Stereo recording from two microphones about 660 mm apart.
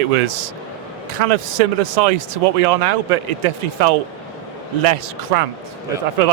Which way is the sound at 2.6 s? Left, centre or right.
Right.